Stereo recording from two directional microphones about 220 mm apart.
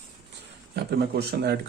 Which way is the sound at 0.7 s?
50° right (ahead or behind).